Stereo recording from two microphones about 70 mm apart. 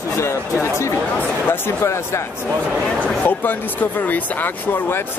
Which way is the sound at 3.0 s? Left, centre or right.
Left.